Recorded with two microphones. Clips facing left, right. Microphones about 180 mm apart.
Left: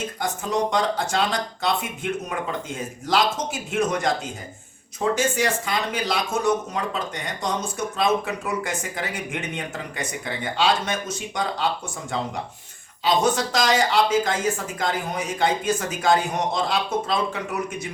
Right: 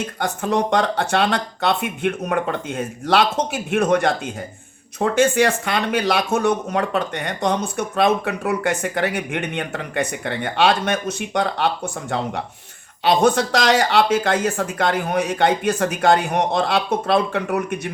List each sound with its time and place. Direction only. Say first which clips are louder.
0.2 s speech: right 4 dB; 60° right (ahead or behind)